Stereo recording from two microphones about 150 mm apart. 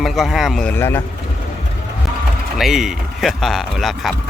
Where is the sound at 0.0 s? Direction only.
Centre (ahead or behind).